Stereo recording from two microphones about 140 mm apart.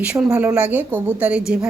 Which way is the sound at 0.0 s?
5° right (ahead or behind).